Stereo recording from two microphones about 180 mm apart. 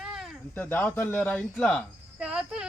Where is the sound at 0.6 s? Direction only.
10° left (ahead or behind).